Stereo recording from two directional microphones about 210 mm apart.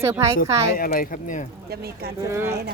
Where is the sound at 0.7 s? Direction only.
45° left (ahead or behind).